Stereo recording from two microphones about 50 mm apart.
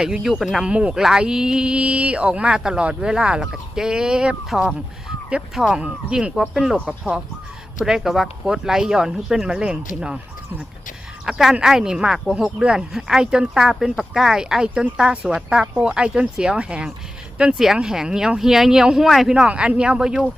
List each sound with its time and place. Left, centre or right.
0.0 s speech: centre
0.6 s speech: right
0.9 s speech: centre
5.5 s speech: centre
7.8 s speech: centre
11.3 s speech: centre
19.0 s speech: centre
19.3 s speech: centre